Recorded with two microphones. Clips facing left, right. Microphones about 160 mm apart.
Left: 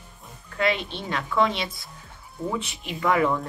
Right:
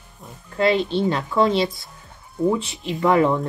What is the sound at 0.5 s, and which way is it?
Speech, 35° right (ahead or behind).